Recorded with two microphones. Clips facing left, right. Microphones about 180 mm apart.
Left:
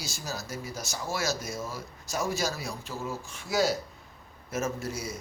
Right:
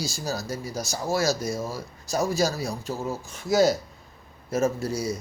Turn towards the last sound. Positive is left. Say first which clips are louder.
# right 6 dB
turn(degrees=-35)  # may be behind; listen again after turning